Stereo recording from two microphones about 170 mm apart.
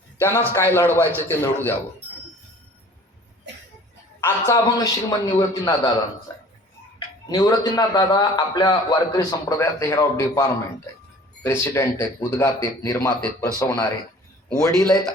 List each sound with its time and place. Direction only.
0.2 s a man's voice: 10° left (ahead or behind)
4.2 s a man's voice: 15° left (ahead or behind)
7.3 s a man's voice: 25° left (ahead or behind)
14.8 s speech: centre (ahead or behind)